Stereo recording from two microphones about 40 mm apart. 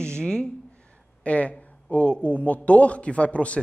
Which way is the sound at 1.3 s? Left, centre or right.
Left.